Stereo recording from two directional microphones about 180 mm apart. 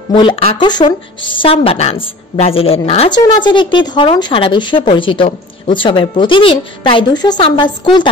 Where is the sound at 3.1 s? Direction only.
25° left (ahead or behind).